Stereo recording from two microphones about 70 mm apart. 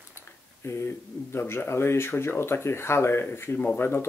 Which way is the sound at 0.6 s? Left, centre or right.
Left.